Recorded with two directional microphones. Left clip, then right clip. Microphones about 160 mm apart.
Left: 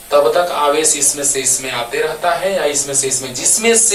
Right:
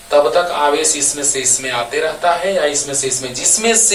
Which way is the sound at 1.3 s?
30° right (ahead or behind).